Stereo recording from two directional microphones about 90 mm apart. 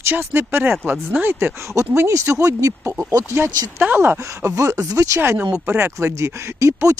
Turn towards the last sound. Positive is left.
turn(degrees=-35)  # may be behind; listen again after turning